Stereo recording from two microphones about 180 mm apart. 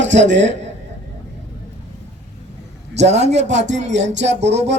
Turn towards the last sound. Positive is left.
turn(degrees=-75)  # may be behind; listen again after turning